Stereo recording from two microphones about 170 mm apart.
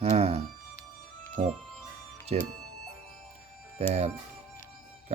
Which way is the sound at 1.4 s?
30° right (ahead or behind).